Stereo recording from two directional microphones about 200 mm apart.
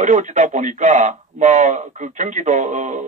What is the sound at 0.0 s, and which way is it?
Speech, 35° right (ahead or behind).